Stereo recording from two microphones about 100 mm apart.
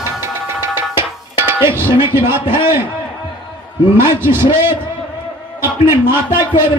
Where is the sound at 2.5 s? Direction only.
25° right (ahead or behind).